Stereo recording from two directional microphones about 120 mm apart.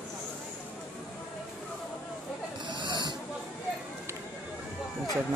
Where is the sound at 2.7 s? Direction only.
40° right (ahead or behind).